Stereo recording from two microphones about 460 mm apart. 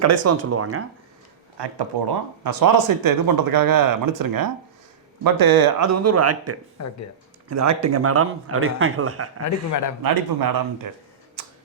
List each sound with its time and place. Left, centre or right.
0.0 s speech: right
1.5 s speech: right
5.9 s speech: right
6.8 s a man's voice: left
7.5 s a man's voice: right
9.4 s a man's voice: left
10.0 s speech: right